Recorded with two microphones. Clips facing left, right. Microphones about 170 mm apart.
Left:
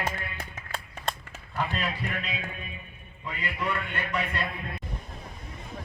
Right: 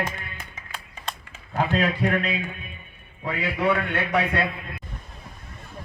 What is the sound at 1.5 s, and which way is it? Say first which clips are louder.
A man's voice: right 8 dB; 55° right (ahead or behind).